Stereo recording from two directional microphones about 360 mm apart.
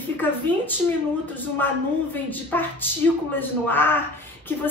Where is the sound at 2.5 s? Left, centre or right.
Centre.